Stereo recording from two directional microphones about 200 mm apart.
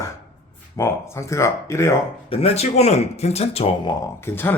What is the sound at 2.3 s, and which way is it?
Speech, 30° left (ahead or behind).